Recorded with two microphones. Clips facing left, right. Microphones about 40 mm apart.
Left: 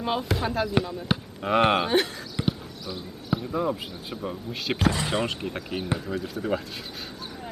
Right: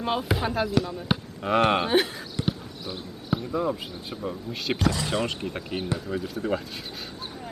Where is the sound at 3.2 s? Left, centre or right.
Centre.